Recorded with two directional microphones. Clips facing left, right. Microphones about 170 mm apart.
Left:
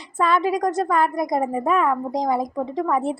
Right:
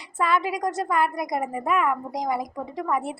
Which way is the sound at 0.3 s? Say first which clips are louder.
Left 5 dB; 25° left (ahead or behind).